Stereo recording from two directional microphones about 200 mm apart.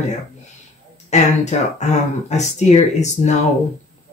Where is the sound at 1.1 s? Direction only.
35° left (ahead or behind).